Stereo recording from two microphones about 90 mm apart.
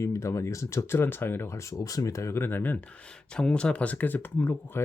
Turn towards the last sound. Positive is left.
turn(degrees=20)  # may be behind; listen again after turning